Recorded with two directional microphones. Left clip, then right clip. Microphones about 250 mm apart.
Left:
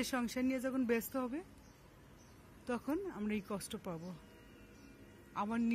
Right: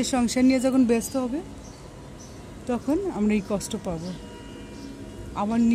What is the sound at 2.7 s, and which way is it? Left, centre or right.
Speech, centre.